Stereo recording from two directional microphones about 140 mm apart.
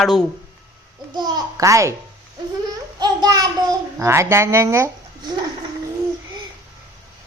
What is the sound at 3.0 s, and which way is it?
A child's voice, 30° right (ahead or behind).